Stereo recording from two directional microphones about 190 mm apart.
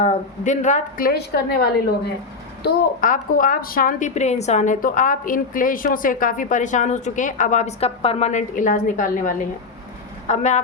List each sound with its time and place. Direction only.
0.0 s a woman's voice: 40° left (ahead or behind); by 1.7 s 55° left (ahead or behind)
2.6 s a woman's voice: 45° left (ahead or behind)